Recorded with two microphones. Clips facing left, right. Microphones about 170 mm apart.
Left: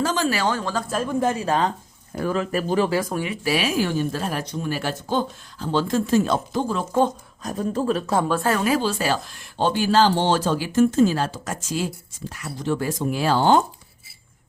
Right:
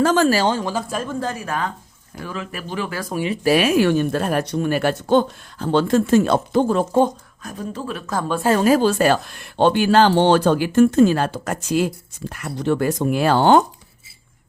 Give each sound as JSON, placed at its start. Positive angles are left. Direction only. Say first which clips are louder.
{"t": 0.0, "sound": "speech", "louder": "right 7 dB", "side_deg": -55}
{"t": 0.3, "sound": "speech", "louder": "right 5 dB", "side_deg": -30}
{"t": 0.6, "sound": "speech", "louder": "right 1 dB", "side_deg": -10}
{"t": 1.0, "sound": "speech", "louder": "left 4 dB", "side_deg": 20}
{"t": 2.1, "sound": "a man's voice", "louder": "left 7 dB", "side_deg": 45}
{"t": 3.4, "sound": "speech", "louder": "right 8 dB", "side_deg": -50}
{"t": 7.4, "sound": "a man's voice", "louder": "left 5 dB", "side_deg": 40}
{"t": 8.4, "sound": "speech", "louder": "right 6 dB", "side_deg": -35}